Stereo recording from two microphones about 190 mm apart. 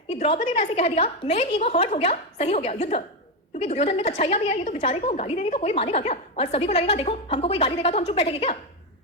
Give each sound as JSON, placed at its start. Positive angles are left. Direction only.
{"t": 0.1, "sound": "a woman's voice", "side_deg": 35}